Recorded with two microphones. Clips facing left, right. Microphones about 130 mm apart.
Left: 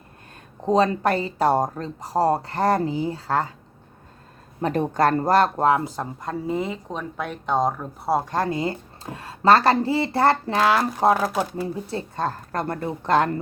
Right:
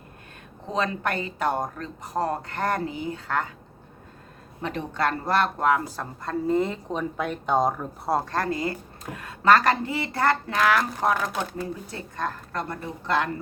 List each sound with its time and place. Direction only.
0.6 s speech: 35° left (ahead or behind)
4.6 s speech: 45° left (ahead or behind); by 6.3 s 20° left (ahead or behind)
6.5 s speech: 5° left (ahead or behind)
8.3 s speech: 20° left (ahead or behind)
11.2 s speech: 5° left (ahead or behind)
11.6 s speech: 30° left (ahead or behind)
12.5 s speech: 50° left (ahead or behind)